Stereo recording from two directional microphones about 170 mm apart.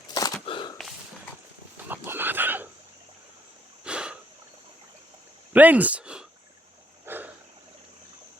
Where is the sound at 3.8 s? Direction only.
5° right (ahead or behind).